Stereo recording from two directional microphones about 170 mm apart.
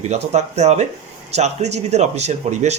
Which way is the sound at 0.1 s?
40° right (ahead or behind).